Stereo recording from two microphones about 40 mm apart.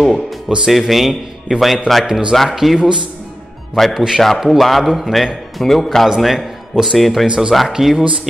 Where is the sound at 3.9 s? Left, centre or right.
Centre.